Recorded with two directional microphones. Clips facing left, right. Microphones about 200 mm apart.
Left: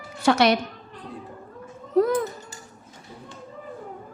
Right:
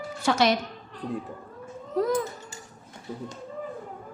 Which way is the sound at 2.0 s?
60° left (ahead or behind).